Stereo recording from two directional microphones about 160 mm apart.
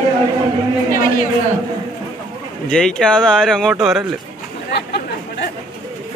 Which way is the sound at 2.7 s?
5° left (ahead or behind).